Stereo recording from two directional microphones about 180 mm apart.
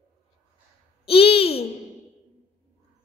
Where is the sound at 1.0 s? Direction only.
30° left (ahead or behind).